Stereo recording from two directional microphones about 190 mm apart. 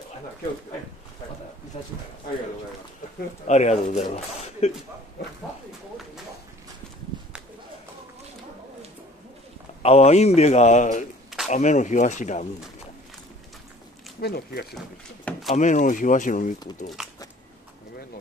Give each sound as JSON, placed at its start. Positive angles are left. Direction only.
{"t": 1.7, "sound": "speech", "side_deg": 35}
{"t": 3.4, "sound": "speech", "side_deg": 35}
{"t": 7.1, "sound": "a sound", "side_deg": -25}
{"t": 9.8, "sound": "speech", "side_deg": 35}
{"t": 14.2, "sound": "speech", "side_deg": 55}
{"t": 15.5, "sound": "speech", "side_deg": 40}